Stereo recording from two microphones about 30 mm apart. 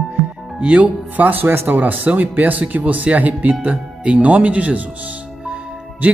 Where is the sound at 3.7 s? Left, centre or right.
Right.